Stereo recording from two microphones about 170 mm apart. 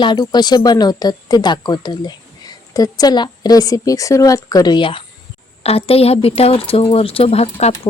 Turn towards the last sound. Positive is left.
turn(degrees=40)  # may be behind; listen again after turning